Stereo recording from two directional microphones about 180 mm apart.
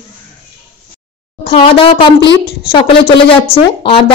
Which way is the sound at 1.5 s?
30° left (ahead or behind).